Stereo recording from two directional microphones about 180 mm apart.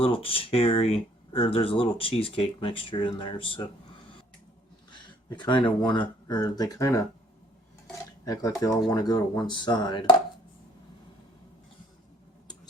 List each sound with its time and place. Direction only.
0.0 s speech: 30° left (ahead or behind)
5.4 s speech: 25° left (ahead or behind)
8.2 s speech: 20° left (ahead or behind)